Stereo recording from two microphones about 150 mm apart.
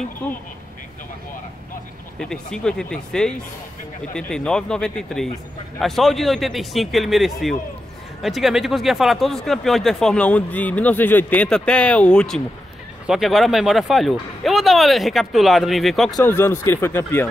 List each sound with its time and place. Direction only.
0.0 s speech: 10° left (ahead or behind)
2.1 s speech: 5° left (ahead or behind)
16.3 s speech: 15° left (ahead or behind)